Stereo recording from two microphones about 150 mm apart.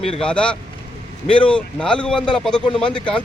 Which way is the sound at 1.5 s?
10° left (ahead or behind).